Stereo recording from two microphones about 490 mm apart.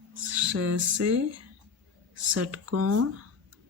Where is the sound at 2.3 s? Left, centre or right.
Right.